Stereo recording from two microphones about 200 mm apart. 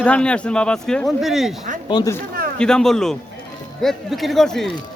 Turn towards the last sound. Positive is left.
turn(degrees=0)  # may be behind; listen again after turning